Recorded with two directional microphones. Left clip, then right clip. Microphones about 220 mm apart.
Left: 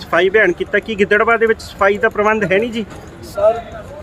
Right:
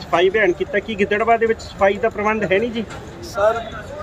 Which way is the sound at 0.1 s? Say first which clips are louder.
Left 3 dB; 40° left (ahead or behind).